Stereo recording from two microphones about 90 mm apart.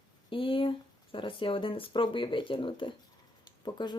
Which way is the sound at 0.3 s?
75° left (ahead or behind).